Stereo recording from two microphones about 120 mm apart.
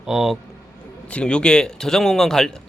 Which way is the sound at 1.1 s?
10° left (ahead or behind).